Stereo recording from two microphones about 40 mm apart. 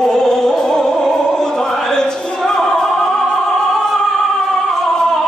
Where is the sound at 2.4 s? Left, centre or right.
Centre.